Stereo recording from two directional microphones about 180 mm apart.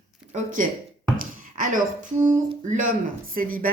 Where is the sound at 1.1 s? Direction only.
50° right (ahead or behind).